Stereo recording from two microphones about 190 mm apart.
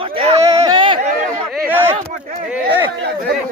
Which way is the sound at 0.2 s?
30° right (ahead or behind).